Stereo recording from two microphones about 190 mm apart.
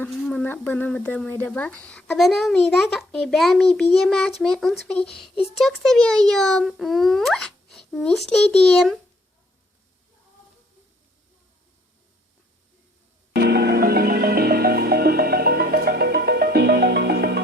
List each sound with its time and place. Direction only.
0.0 s speech: 10° left (ahead or behind)
5.3 s speech: 30° left (ahead or behind)
5.5 s speech: centre (ahead or behind)
13.3 s music: 60° right (ahead or behind)